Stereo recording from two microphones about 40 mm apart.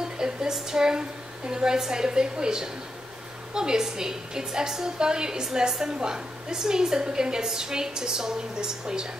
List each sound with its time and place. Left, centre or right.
0.2 s a woman's voice: centre